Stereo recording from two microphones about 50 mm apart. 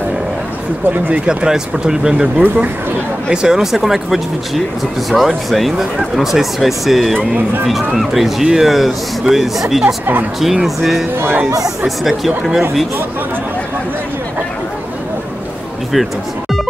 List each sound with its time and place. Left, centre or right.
0.8 s speech: right
1.2 s speech: centre
2.4 s speech: right
3.3 s speech: centre
7.2 s speech: right
7.6 s speech: centre